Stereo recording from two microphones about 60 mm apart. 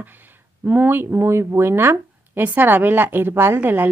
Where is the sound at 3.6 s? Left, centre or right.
Right.